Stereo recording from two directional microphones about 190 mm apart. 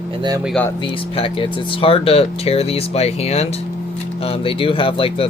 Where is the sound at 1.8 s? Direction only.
30° left (ahead or behind).